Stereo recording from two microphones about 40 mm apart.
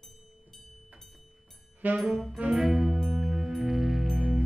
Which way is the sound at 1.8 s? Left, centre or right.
Right.